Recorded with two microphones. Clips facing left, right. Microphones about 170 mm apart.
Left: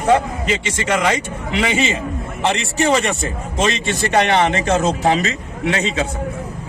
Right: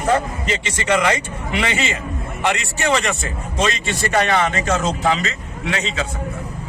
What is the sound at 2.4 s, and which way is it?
Speech, 25° left (ahead or behind).